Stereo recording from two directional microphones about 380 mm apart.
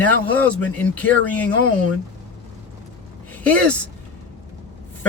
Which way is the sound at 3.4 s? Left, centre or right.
Centre.